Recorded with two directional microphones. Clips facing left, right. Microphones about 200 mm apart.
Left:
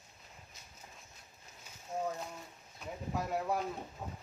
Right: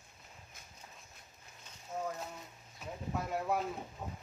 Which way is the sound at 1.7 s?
10° left (ahead or behind).